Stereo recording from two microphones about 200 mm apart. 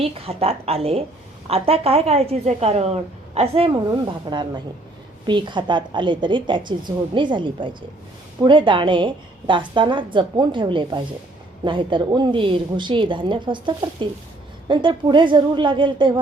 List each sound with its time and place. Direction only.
0.0 s a woman's voice: 30° right (ahead or behind)